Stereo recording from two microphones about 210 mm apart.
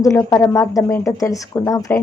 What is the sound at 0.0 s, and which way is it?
A woman's voice, 15° left (ahead or behind).